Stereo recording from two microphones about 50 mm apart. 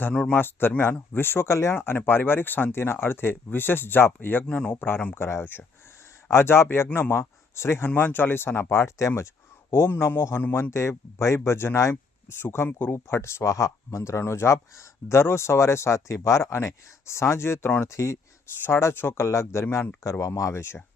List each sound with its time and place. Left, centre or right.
0.1 s speech: left
0.3 s speech: left
1.5 s speech: left
1.7 s speech: left
2.7 s speech: left
4.4 s speech: left
5.1 s speech: left
7.9 s speech: left
9.7 s speech: left
10.5 s speech: left
11.4 s speech: left
17.8 s speech: left
18.7 s speech: left
20.1 s speech: left